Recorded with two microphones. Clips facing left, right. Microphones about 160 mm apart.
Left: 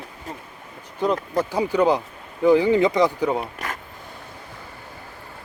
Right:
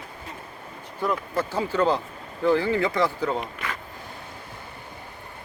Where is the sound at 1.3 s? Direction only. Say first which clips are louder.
Left 4 dB; 15° left (ahead or behind).